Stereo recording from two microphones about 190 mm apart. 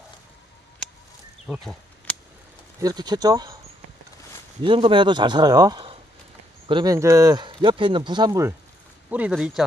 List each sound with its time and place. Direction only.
1.5 s speech: centre (ahead or behind)
2.8 s speech: 20° right (ahead or behind)
4.6 s speech: 25° right (ahead or behind); by 9.6 s 5° right (ahead or behind)